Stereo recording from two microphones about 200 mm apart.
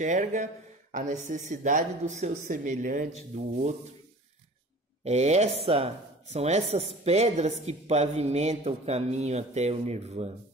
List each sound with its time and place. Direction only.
0.0 s speech: 40° right (ahead or behind)
5.0 s speech: 35° right (ahead or behind)